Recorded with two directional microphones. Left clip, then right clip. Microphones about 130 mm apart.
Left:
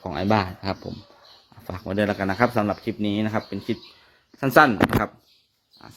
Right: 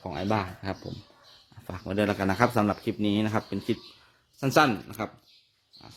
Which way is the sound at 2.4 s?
30° right (ahead or behind).